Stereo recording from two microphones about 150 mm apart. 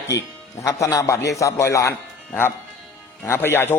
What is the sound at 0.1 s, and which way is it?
A man's voice, 25° left (ahead or behind).